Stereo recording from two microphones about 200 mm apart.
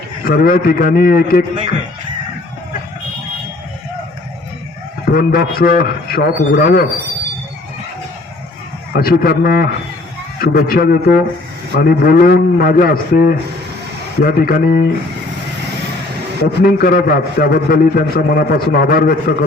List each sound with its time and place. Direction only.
0.3 s a man's voice: 45° left (ahead or behind)
5.1 s a man's voice: 45° left (ahead or behind)
8.9 s a man's voice: 50° left (ahead or behind)
16.4 s a man's voice: 50° left (ahead or behind)